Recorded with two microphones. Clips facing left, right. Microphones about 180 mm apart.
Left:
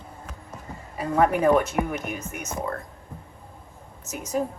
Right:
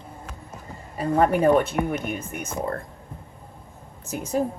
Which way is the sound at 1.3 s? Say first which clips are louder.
Right 1 dB; 30° right (ahead or behind).